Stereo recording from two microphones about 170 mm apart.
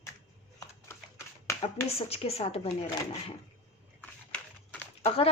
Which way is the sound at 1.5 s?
15° left (ahead or behind).